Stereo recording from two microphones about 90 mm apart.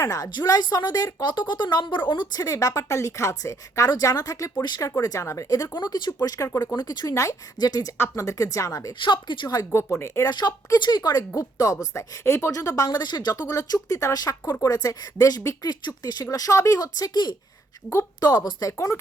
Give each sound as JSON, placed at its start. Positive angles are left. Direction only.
{"t": 0.0, "sound": "a woman's voice", "side_deg": 40}
{"t": 6.7, "sound": "speech", "side_deg": 50}
{"t": 7.1, "sound": "a woman's voice", "side_deg": 35}
{"t": 7.6, "sound": "speech", "side_deg": 45}
{"t": 7.9, "sound": "a woman's voice", "side_deg": 30}
{"t": 9.0, "sound": "speech", "side_deg": 60}
{"t": 9.7, "sound": "a woman's voice", "side_deg": 30}
{"t": 10.2, "sound": "a woman's voice", "side_deg": 50}
{"t": 12.9, "sound": "speech", "side_deg": 55}